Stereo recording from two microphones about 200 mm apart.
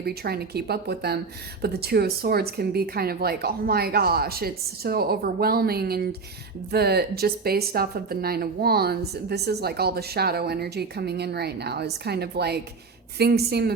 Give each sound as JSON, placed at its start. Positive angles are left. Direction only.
{"t": 0.0, "sound": "a woman's voice", "side_deg": -50}